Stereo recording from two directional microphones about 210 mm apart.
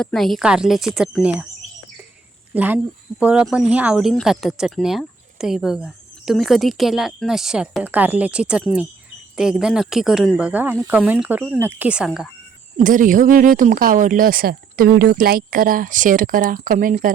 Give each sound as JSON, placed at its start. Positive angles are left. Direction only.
{"t": 0.0, "sound": "speech", "side_deg": 0}
{"t": 2.6, "sound": "speech", "side_deg": -5}
{"t": 12.7, "sound": "speech", "side_deg": -40}